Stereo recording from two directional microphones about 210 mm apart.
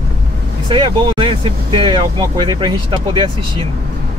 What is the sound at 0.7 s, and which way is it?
Speech, 25° right (ahead or behind).